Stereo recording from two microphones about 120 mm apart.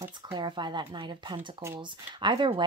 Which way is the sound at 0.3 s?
40° right (ahead or behind).